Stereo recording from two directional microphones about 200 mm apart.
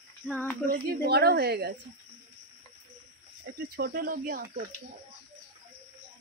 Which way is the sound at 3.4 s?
50° right (ahead or behind).